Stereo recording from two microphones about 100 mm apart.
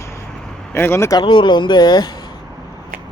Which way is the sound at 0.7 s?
25° left (ahead or behind).